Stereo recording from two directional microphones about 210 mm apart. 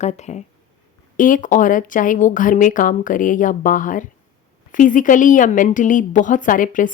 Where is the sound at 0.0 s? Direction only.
35° left (ahead or behind).